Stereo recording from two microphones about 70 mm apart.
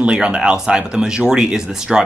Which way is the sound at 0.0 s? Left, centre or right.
Centre.